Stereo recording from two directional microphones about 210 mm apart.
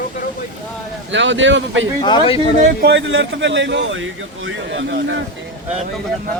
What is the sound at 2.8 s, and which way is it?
Speech, 55° right (ahead or behind).